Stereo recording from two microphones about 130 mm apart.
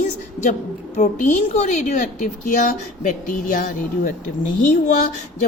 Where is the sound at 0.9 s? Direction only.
60° left (ahead or behind); by 4.1 s 90° left.